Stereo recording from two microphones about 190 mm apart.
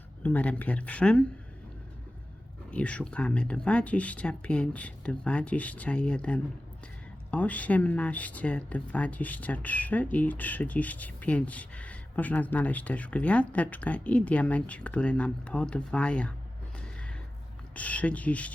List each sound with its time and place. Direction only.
0.2 s speech: 10° left (ahead or behind)
2.6 s speech: 5° left (ahead or behind)
16.7 s a sound: 5° left (ahead or behind)
17.7 s speech: 10° left (ahead or behind)